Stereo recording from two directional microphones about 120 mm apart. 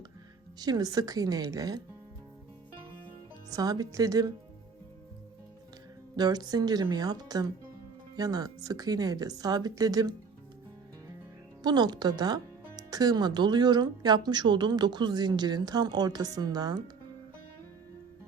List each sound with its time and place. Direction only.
0.6 s speech: 30° right (ahead or behind)
3.5 s speech: 30° right (ahead or behind)
6.1 s speech: 35° right (ahead or behind)
11.6 s speech: 35° right (ahead or behind)